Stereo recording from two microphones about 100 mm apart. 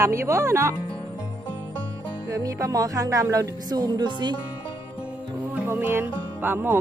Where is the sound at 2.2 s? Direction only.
35° right (ahead or behind).